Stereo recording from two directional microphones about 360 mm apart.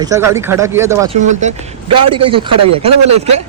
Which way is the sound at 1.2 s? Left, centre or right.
Centre.